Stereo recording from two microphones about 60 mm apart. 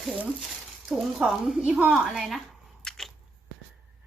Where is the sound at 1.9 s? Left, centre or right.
Centre.